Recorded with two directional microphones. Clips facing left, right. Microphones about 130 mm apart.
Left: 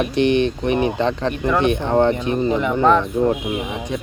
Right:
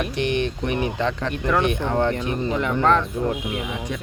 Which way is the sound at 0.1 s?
25° left (ahead or behind).